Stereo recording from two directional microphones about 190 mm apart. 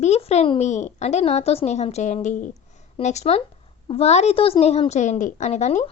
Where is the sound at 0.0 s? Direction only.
35° left (ahead or behind).